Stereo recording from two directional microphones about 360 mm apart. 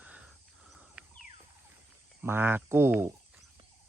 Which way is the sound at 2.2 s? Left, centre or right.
Centre.